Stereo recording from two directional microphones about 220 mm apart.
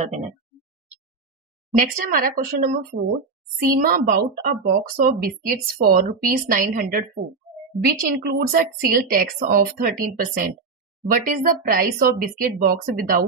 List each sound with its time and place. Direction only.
1.8 s a woman's voice: 40° right (ahead or behind)